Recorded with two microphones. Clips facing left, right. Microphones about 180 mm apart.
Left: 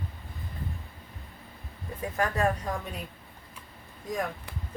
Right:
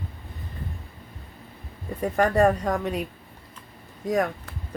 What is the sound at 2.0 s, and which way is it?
Speech, 65° right (ahead or behind).